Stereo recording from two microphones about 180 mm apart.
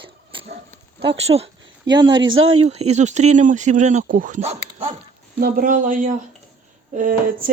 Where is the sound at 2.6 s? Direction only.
35° right (ahead or behind).